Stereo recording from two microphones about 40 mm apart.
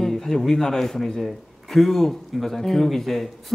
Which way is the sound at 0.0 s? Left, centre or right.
Centre.